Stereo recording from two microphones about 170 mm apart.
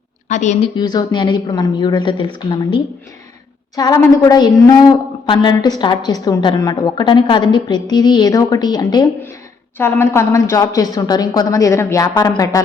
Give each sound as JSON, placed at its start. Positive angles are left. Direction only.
{"t": 0.3, "sound": "a woman's voice", "side_deg": 45}
{"t": 0.8, "sound": "a woman's voice", "side_deg": 25}